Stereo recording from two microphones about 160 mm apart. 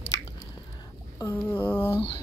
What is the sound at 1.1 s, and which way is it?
Speech, 15° left (ahead or behind).